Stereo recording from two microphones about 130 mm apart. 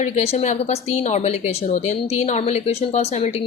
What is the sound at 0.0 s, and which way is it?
Speech, 55° left (ahead or behind).